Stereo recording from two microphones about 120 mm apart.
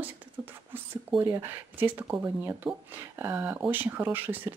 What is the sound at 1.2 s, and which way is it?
Speech, 15° right (ahead or behind).